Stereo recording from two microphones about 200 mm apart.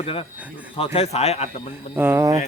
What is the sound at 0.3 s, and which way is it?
Speech, 5° right (ahead or behind).